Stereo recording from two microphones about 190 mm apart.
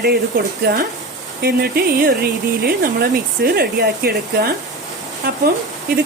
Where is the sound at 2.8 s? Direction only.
50° right (ahead or behind).